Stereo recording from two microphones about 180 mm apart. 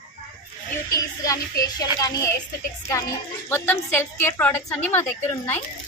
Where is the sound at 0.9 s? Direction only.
20° left (ahead or behind).